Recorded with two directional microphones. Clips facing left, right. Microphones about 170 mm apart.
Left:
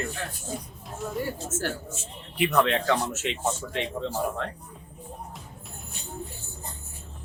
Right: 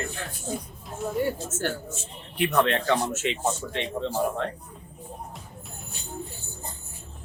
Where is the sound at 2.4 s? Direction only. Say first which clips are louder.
Even; centre (ahead or behind).